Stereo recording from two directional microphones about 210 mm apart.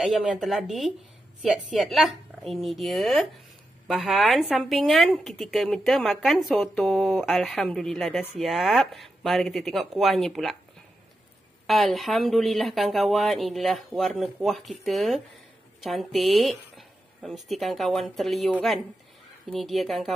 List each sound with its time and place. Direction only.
0.0 s a woman's voice: 5° right (ahead or behind)
11.6 s a woman's voice: centre (ahead or behind)